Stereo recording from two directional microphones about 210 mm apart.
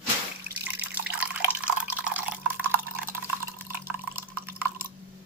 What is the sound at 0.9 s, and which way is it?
Drip, 5° right (ahead or behind).